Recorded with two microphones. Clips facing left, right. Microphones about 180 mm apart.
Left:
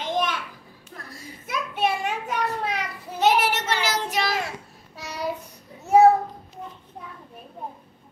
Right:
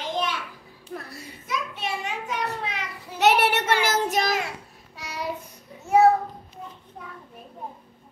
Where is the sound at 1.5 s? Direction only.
55° left (ahead or behind).